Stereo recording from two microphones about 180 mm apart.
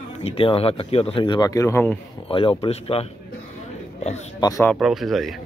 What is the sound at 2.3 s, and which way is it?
Speech, 30° left (ahead or behind).